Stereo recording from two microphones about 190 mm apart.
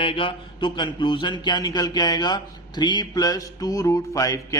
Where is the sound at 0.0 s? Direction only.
30° left (ahead or behind).